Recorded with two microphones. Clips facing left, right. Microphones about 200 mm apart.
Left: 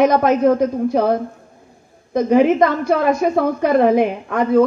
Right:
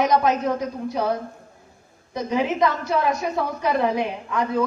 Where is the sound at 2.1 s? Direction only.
50° left (ahead or behind).